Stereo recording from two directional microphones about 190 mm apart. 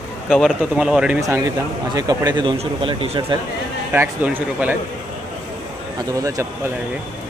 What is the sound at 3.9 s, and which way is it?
Speech, 10° right (ahead or behind).